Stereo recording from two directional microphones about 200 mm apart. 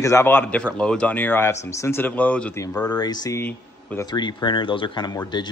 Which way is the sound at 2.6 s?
20° left (ahead or behind).